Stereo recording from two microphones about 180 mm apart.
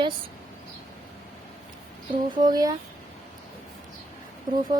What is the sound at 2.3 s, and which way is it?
Speech, 20° right (ahead or behind).